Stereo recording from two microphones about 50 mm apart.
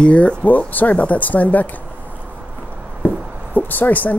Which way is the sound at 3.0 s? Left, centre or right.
Left.